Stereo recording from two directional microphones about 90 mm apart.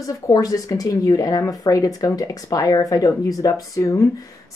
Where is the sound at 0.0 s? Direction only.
40° left (ahead or behind).